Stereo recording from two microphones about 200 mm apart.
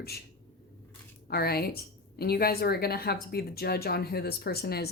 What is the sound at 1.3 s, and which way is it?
A woman's voice, 50° left (ahead or behind).